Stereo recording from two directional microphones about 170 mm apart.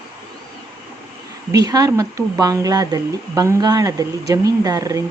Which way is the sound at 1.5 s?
20° right (ahead or behind).